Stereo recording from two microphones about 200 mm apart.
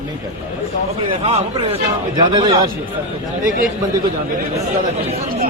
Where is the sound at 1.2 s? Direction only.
30° right (ahead or behind).